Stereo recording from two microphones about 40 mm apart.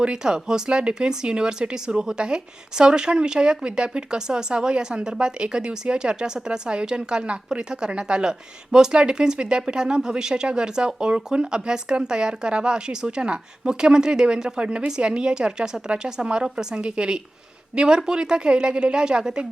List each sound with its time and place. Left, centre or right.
0.0 s speech: centre